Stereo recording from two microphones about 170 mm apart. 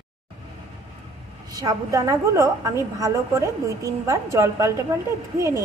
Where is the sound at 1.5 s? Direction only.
20° right (ahead or behind).